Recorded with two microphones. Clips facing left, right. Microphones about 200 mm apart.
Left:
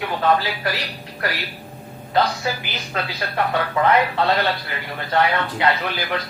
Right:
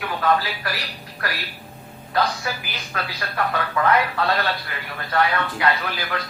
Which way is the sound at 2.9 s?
25° left (ahead or behind).